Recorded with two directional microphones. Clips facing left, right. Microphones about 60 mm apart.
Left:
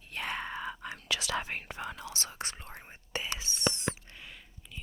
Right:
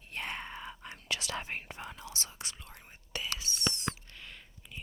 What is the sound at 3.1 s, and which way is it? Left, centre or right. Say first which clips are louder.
Whispering: left 2 dB; left.